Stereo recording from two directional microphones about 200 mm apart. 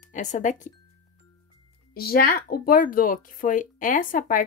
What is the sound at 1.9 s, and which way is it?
Speech, 50° left (ahead or behind).